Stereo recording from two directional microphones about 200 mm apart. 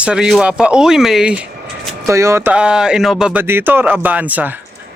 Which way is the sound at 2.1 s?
15° right (ahead or behind).